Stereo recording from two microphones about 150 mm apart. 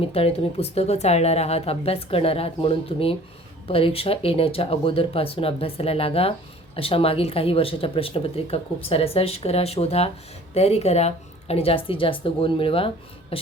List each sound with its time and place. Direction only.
0.0 s a woman's voice: 40° left (ahead or behind)